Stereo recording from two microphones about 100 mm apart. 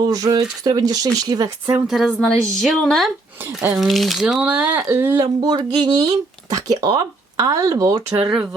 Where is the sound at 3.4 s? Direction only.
20° right (ahead or behind).